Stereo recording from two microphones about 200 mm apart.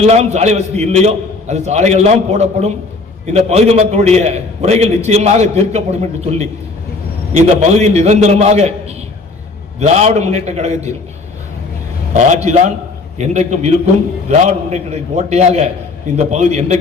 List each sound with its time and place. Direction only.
0.0 s a man's voice: 30° right (ahead or behind)
9.8 s a man's voice: 35° right (ahead or behind)
12.1 s a man's voice: 35° right (ahead or behind)